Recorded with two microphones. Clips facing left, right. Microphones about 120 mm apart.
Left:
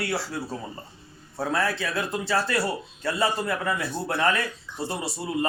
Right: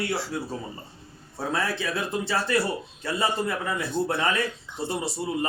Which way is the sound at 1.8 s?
20° right (ahead or behind).